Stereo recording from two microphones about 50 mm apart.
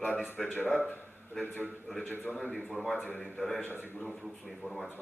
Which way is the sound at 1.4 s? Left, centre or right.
Left.